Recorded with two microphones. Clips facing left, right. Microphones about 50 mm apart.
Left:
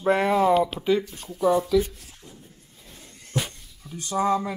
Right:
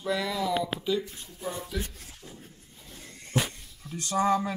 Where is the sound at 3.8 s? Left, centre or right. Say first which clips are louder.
Left 2 dB; centre.